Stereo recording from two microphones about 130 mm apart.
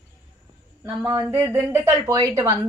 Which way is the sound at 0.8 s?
15° right (ahead or behind).